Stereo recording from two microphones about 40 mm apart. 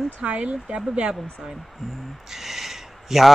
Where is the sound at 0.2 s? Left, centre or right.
Right.